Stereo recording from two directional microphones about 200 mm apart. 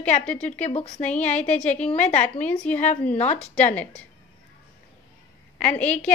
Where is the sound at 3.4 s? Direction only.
5° left (ahead or behind).